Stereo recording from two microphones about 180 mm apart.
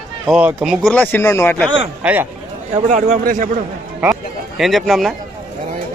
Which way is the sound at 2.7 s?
45° right (ahead or behind).